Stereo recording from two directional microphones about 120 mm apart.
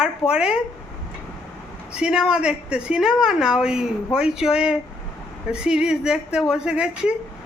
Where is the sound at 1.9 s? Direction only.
5° right (ahead or behind).